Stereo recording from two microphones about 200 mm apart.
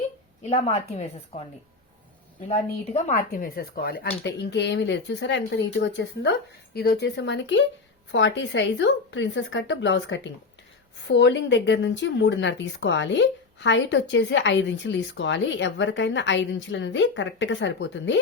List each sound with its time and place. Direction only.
0.5 s a woman's voice: 30° left (ahead or behind)
2.5 s a woman's voice: 35° left (ahead or behind)
3.2 s speech: 45° left (ahead or behind); by 18.2 s 65° left (ahead or behind)